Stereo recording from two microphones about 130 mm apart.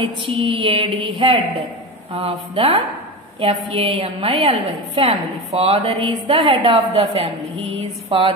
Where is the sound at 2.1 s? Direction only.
45° right (ahead or behind).